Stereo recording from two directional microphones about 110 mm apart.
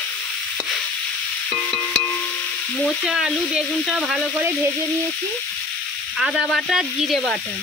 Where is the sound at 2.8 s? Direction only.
Centre (ahead or behind).